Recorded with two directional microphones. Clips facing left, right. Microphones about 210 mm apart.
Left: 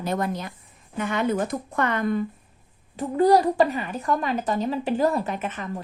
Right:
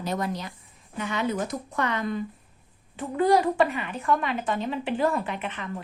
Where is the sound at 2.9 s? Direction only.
40° left (ahead or behind).